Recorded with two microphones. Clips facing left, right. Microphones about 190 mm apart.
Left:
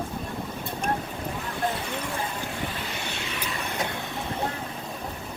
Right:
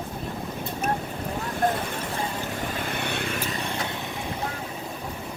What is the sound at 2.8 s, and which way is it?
Vehicle, 55° right (ahead or behind).